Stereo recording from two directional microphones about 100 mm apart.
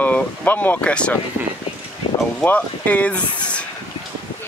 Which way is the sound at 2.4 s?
15° left (ahead or behind).